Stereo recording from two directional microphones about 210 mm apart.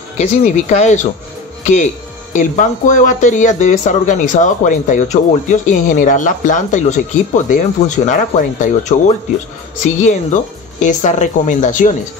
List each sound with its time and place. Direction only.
0.2 s speech: 35° left (ahead or behind)